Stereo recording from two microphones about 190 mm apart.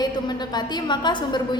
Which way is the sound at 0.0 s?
20° left (ahead or behind).